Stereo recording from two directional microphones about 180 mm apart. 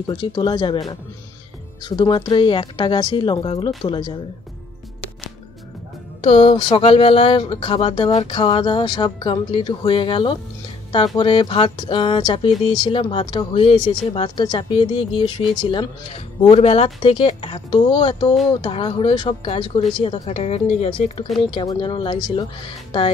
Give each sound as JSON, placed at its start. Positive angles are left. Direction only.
{"t": 0.0, "sound": "speech", "side_deg": 25}
{"t": 6.2, "sound": "speech", "side_deg": 30}